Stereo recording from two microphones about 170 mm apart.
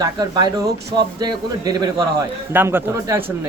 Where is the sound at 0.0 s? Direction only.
25° right (ahead or behind).